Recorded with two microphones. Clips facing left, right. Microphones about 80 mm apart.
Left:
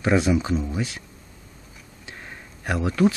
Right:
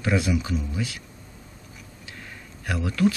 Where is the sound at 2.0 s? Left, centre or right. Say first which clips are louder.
Left 3 dB; left.